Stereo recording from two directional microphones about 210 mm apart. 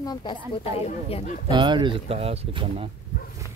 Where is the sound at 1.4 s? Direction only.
20° right (ahead or behind).